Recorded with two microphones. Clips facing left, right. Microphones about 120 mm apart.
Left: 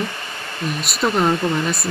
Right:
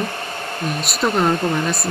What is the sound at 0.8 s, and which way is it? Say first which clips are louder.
Speech: even; centre (ahead or behind).